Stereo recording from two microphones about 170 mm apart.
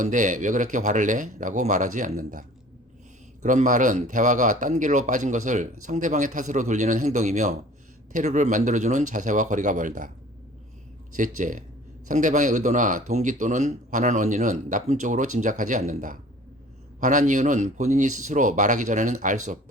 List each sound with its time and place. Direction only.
0.0 s speech: 50° right (ahead or behind)
11.2 s speech: 50° right (ahead or behind)